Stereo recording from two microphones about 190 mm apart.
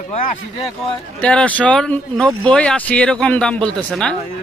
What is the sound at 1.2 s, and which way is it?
Speech, 5° left (ahead or behind).